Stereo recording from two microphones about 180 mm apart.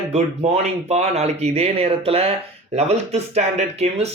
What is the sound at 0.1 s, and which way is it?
Speech, 35° right (ahead or behind).